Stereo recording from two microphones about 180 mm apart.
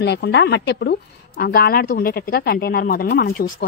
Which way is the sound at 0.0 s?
70° left (ahead or behind).